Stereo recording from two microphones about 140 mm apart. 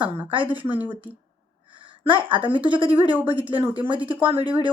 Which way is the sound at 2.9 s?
15° right (ahead or behind).